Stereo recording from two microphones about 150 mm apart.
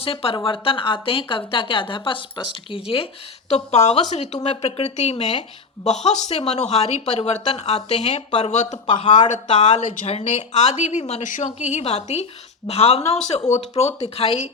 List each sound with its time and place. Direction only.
0.0 s a woman's voice: 40° left (ahead or behind)
8.9 s speech: 35° left (ahead or behind)
9.6 s a woman's voice: 50° left (ahead or behind)
11.7 s a woman's voice: 45° left (ahead or behind)